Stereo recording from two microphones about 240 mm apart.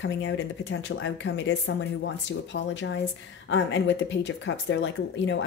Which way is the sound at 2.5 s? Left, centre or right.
Left.